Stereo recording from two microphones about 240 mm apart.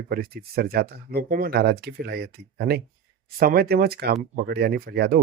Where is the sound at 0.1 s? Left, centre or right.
Right.